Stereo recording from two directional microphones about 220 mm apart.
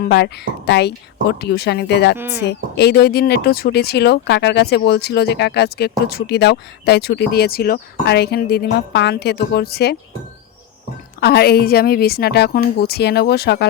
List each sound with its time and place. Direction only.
0.0 s speech: 50° left (ahead or behind)
2.1 s speech: 10° right (ahead or behind)
2.4 s speech: 50° left (ahead or behind)
11.2 s speech: 45° left (ahead or behind)